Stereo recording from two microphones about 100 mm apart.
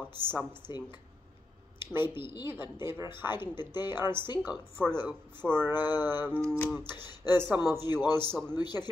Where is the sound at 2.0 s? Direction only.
50° left (ahead or behind).